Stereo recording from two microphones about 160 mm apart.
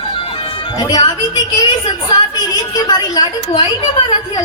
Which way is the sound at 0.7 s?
25° left (ahead or behind).